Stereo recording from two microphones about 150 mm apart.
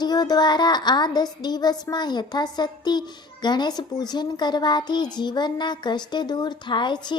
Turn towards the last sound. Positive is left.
turn(degrees=30)  # may be behind; listen again after turning